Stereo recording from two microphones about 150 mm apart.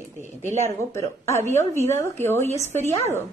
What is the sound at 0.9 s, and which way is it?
Speech, 20° left (ahead or behind).